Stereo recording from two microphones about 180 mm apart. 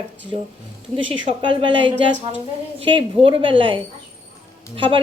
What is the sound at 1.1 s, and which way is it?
A woman's voice, 25° right (ahead or behind).